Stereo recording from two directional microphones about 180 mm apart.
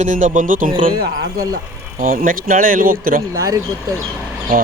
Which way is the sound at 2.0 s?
50° right (ahead or behind).